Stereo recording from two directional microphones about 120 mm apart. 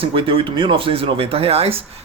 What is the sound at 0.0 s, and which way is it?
Speech, 45° right (ahead or behind).